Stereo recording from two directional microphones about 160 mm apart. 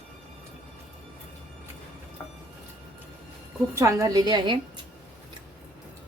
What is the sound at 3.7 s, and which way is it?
Speech, 20° right (ahead or behind).